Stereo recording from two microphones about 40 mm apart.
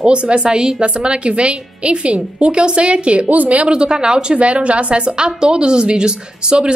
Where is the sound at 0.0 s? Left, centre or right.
Right.